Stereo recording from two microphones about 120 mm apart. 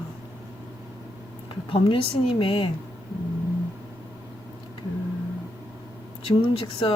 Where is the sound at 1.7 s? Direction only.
50° left (ahead or behind).